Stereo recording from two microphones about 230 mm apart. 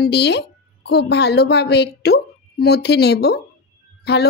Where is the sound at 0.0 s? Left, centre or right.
Left.